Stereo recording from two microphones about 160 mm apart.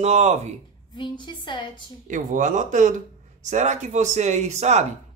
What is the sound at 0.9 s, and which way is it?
Speech, 30° left (ahead or behind).